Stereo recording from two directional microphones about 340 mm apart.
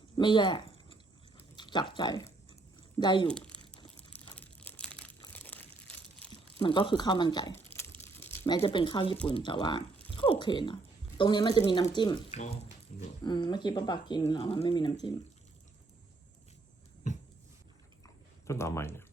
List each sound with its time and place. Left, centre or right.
0.2 s squish: centre
1.4 s chewing: centre
3.0 s speech: centre
3.2 s crumpling: centre
3.8 s a sound: centre
4.4 s crumpling: centre
6.6 s speech: centre
18.0 s a sound: centre